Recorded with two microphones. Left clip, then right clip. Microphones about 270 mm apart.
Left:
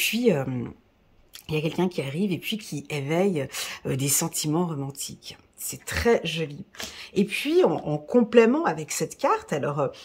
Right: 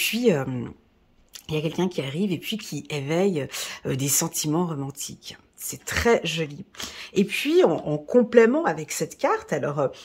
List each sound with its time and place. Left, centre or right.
0.0 s speech: centre